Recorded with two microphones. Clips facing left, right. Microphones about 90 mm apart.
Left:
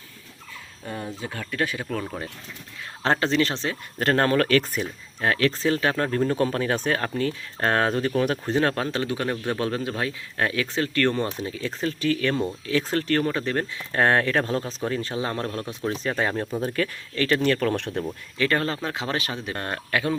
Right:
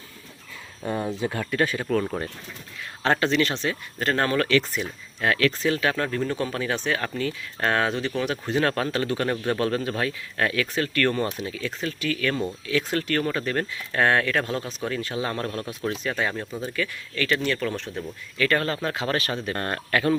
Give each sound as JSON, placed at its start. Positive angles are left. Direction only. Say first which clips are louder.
{"t": 1.2, "sound": "speech", "louder": "right 2 dB", "side_deg": -10}
{"t": 3.0, "sound": "speech", "louder": "even", "side_deg": 30}
{"t": 3.9, "sound": "speech", "louder": "left 3 dB", "side_deg": 50}
{"t": 8.5, "sound": "speech", "louder": "right 2 dB", "side_deg": 25}
{"t": 18.0, "sound": "speech", "louder": "left 1 dB", "side_deg": 25}